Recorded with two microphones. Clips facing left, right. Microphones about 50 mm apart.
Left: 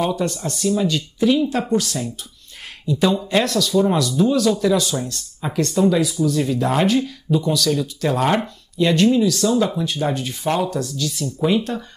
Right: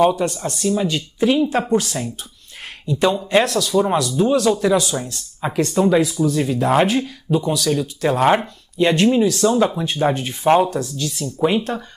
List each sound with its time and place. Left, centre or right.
0.7 s speech: right
3.0 s speech: centre
3.5 s speech: right
6.3 s speech: centre